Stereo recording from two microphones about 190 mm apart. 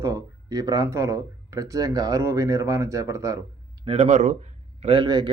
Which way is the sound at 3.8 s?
30° right (ahead or behind).